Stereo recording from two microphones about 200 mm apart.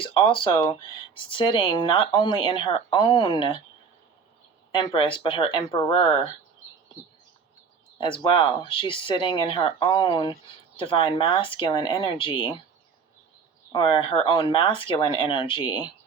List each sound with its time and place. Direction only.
0.0 s speech: 25° left (ahead or behind)
4.7 s speech: 25° left (ahead or behind)
7.9 s speech: 25° left (ahead or behind)
13.7 s speech: 25° left (ahead or behind)